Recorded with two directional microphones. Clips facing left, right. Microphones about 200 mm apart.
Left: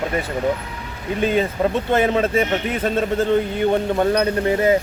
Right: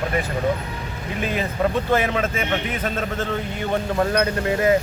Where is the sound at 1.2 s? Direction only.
30° left (ahead or behind).